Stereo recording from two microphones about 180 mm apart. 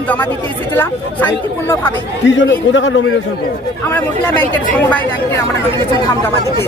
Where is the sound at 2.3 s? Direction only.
90° left.